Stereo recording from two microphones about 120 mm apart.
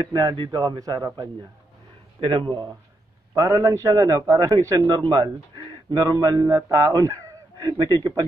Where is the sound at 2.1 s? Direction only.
45° right (ahead or behind).